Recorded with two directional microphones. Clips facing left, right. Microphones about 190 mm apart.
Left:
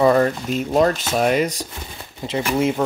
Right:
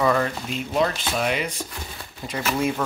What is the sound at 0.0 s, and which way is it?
Speech, 35° left (ahead or behind).